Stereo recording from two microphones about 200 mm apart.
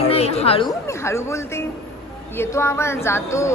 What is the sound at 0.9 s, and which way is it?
A woman's voice, 15° left (ahead or behind).